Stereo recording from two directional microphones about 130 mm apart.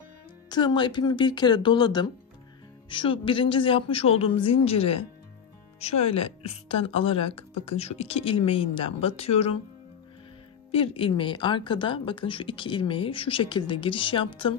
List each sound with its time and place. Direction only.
0.5 s a woman's voice: 35° left (ahead or behind); by 9.6 s 50° left (ahead or behind)
10.7 s a woman's voice: 45° left (ahead or behind)